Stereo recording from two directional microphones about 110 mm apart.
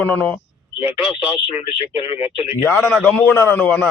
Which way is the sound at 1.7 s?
60° left (ahead or behind).